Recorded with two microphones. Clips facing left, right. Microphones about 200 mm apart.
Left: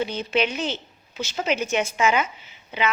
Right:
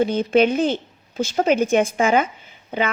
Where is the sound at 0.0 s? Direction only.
50° right (ahead or behind).